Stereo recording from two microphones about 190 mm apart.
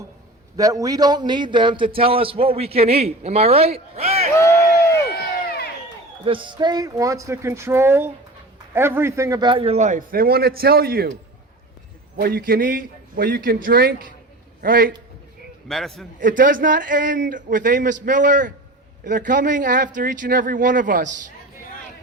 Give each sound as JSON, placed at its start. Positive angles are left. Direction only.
{"t": 0.5, "sound": "a man's voice", "side_deg": -20}
{"t": 5.5, "sound": "crowd", "side_deg": 60}
{"t": 6.2, "sound": "a man's voice", "side_deg": -25}
{"t": 12.1, "sound": "a man's voice", "side_deg": -50}
{"t": 15.7, "sound": "a man's voice", "side_deg": 0}
{"t": 16.2, "sound": "a man's voice", "side_deg": -45}